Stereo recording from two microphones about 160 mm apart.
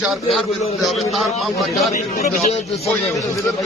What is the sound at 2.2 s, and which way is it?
Speech, 40° left (ahead or behind).